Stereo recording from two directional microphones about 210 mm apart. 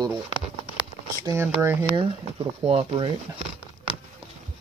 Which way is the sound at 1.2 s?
10° right (ahead or behind).